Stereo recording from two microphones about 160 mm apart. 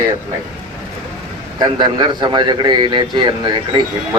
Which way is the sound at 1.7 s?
25° right (ahead or behind).